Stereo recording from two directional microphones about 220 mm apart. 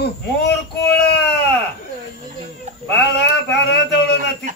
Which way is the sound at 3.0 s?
50° left (ahead or behind).